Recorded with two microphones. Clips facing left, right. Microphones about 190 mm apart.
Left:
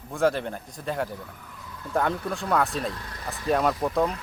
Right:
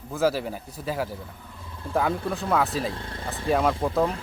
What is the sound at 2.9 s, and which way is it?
Speech, 25° right (ahead or behind).